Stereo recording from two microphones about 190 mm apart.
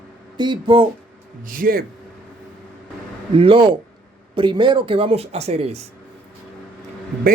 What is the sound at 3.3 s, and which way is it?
Speech, 30° right (ahead or behind).